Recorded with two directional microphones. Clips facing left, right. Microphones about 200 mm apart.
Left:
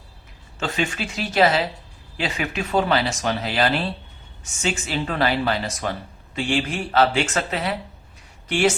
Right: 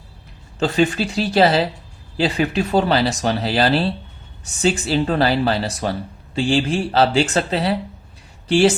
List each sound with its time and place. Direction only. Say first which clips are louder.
0.6 s speech: right 8 dB; 35° right (ahead or behind)